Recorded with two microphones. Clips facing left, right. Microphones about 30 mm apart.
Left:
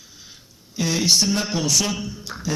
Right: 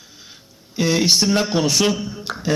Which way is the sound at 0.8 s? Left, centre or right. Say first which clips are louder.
Right 3 dB; right.